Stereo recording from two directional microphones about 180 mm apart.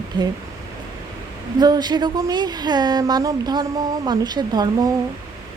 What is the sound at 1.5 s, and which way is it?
A woman's voice, 20° right (ahead or behind).